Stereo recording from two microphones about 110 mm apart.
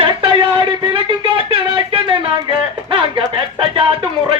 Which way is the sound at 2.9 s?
55° right (ahead or behind).